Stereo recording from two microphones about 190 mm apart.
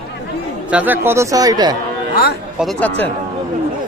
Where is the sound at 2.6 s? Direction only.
5° left (ahead or behind).